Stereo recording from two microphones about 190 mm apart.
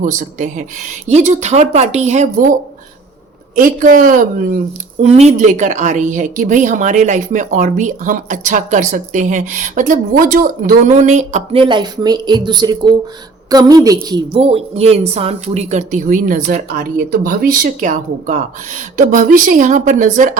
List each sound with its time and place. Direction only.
0.0 s a woman's voice: 40° right (ahead or behind); by 14.2 s 20° right (ahead or behind)
14.3 s speech: 30° right (ahead or behind)